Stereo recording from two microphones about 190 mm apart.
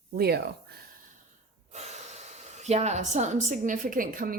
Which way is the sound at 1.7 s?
35° right (ahead or behind).